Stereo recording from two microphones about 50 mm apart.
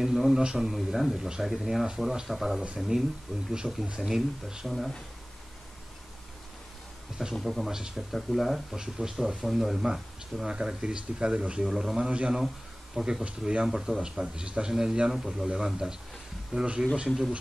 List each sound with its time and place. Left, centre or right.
0.0 s speech: centre
1.1 s speech: centre
2.9 s speech: centre
4.6 s speech: centre
7.3 s speech: centre
7.7 s speech: centre
8.1 s speech: centre
10.4 s speech: centre
11.6 s speech: centre
12.1 s speech: centre
13.7 s speech: centre